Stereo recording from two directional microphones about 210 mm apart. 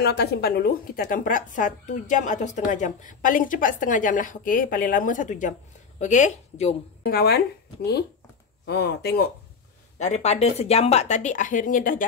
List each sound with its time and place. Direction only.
0.0 s speech: 50° left (ahead or behind); by 6.7 s 35° left (ahead or behind)
7.0 s speech: 50° left (ahead or behind)
9.9 s speech: 35° left (ahead or behind)